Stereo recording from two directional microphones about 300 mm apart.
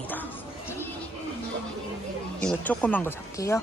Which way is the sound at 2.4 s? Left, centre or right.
Centre.